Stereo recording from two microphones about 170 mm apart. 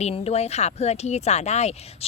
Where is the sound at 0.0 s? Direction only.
40° left (ahead or behind).